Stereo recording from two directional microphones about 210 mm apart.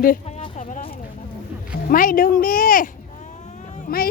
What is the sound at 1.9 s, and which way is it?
Speech, 40° left (ahead or behind).